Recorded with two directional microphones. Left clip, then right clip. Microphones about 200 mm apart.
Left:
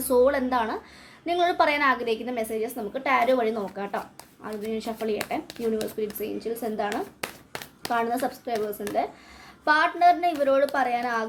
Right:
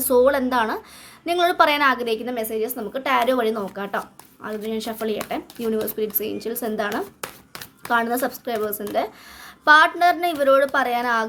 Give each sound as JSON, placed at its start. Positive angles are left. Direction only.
{"t": 0.0, "sound": "a woman's voice", "side_deg": -25}
{"t": 6.9, "sound": "a sound", "side_deg": -10}
{"t": 7.9, "sound": "a woman's voice", "side_deg": -30}